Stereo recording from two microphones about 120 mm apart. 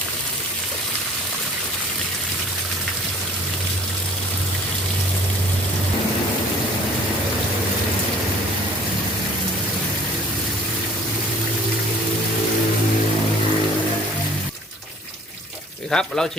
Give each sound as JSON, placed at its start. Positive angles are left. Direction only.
{"t": 15.9, "sound": "speech", "side_deg": 5}